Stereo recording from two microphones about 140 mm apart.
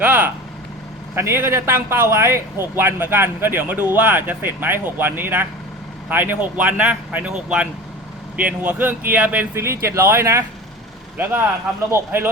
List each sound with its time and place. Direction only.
1.1 s a man's voice: 20° right (ahead or behind)